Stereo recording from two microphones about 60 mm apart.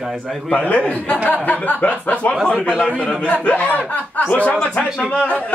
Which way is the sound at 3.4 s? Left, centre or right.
Left.